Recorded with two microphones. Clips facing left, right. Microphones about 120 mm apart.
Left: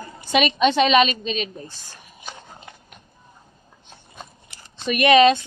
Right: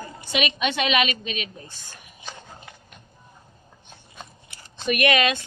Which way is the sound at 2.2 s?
5° left (ahead or behind).